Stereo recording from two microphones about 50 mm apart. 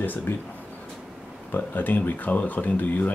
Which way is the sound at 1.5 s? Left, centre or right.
Left.